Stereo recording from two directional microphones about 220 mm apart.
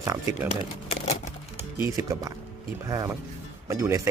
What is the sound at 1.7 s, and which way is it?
Speech, 10° right (ahead or behind).